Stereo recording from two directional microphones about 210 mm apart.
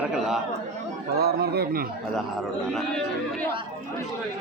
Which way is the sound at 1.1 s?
50° right (ahead or behind).